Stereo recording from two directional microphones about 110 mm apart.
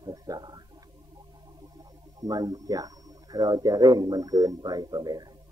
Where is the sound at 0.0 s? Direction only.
35° right (ahead or behind).